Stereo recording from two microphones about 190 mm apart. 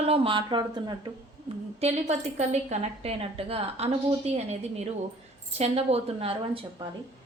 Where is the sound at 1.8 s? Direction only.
35° right (ahead or behind).